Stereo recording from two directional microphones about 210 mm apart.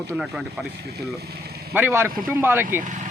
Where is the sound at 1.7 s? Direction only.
10° right (ahead or behind).